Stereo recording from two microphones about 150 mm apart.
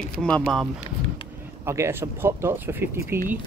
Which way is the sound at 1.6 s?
20° right (ahead or behind).